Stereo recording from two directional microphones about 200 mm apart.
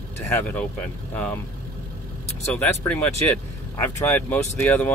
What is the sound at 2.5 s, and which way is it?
Speech, 10° left (ahead or behind).